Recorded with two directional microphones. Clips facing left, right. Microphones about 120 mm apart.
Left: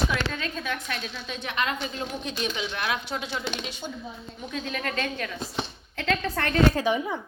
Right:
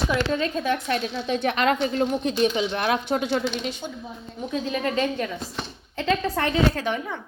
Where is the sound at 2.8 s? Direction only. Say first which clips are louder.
Right 7 dB; 45° right (ahead or behind).